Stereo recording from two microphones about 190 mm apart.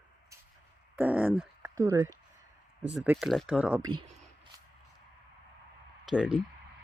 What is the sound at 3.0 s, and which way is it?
Speech, centre (ahead or behind).